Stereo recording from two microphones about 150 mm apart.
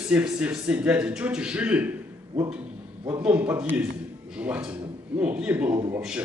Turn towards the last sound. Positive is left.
turn(degrees=-20)  # may be behind; listen again after turning